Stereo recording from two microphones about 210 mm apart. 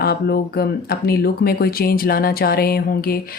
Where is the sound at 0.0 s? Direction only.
45° left (ahead or behind).